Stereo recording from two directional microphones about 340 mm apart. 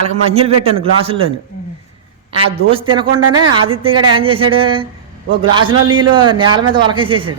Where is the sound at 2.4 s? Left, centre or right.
Centre.